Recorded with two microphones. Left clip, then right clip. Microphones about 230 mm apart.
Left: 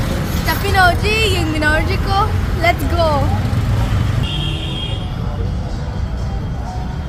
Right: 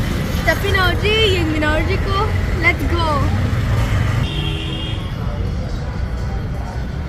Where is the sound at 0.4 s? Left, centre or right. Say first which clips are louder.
Left 3 dB; centre.